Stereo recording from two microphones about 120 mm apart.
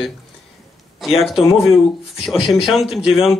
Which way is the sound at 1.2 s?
50° left (ahead or behind).